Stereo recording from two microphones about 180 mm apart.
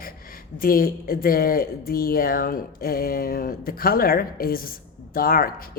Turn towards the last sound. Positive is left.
turn(degrees=55)  # may be behind; listen again after turning